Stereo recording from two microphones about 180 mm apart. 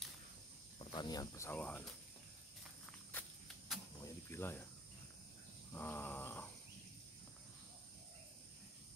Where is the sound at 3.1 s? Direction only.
10° left (ahead or behind).